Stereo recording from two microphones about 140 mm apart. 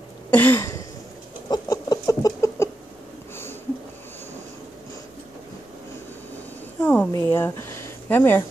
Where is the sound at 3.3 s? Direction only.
15° left (ahead or behind).